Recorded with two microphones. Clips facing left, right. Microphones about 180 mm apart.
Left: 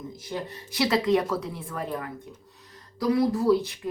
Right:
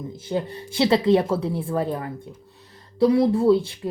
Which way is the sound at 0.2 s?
30° right (ahead or behind).